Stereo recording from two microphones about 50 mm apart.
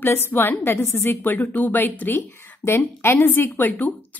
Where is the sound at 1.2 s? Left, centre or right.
Left.